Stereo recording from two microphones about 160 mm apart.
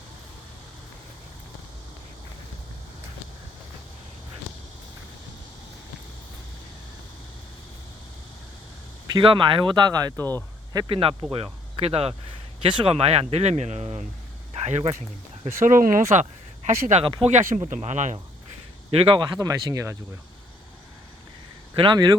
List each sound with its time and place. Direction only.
9.1 s speech: 30° right (ahead or behind)
15.6 s speech: 55° right (ahead or behind)
16.6 s speech: 45° right (ahead or behind)
17.1 s speech: 35° right (ahead or behind)
17.3 s speech: 50° right (ahead or behind)
18.9 s speech: 35° right (ahead or behind); by 20.0 s 20° right (ahead or behind)
21.8 s speech: 30° right (ahead or behind)